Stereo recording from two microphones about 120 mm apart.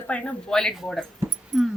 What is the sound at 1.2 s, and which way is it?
Dog, 20° right (ahead or behind).